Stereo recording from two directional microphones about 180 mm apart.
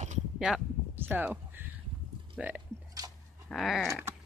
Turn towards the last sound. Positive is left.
turn(degrees=0)  # may be behind; listen again after turning